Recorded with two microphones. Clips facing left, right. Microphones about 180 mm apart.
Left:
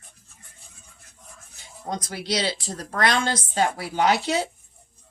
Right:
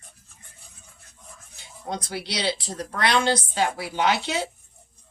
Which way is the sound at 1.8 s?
45° left (ahead or behind).